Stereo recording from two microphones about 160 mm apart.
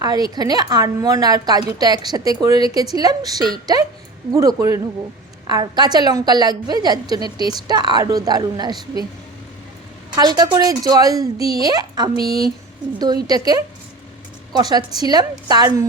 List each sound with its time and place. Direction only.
0.0 s a woman's voice: 25° right (ahead or behind)
10.2 s a woman's voice: 25° right (ahead or behind)